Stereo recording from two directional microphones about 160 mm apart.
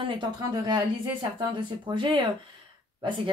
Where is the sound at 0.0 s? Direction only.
30° right (ahead or behind).